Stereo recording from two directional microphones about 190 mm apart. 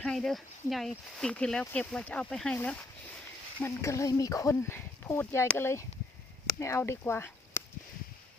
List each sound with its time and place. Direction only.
0.0 s speech: centre (ahead or behind)